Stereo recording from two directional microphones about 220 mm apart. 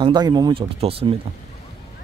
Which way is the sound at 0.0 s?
20° right (ahead or behind).